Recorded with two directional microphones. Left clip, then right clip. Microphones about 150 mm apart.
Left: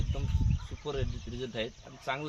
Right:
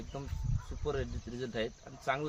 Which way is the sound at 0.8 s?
5° left (ahead or behind).